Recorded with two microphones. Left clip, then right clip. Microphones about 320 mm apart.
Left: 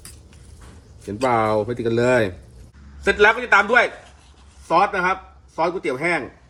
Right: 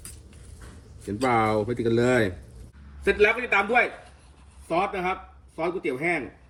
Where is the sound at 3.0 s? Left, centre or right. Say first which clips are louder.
Left 6 dB; left.